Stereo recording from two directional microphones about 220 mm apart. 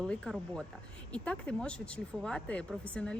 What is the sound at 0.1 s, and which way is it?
Speech, centre (ahead or behind).